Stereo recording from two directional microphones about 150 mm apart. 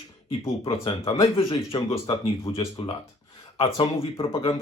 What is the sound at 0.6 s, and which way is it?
Speech, 30° left (ahead or behind).